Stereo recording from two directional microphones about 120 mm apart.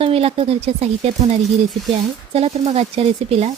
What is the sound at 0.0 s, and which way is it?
Speech, 55° right (ahead or behind).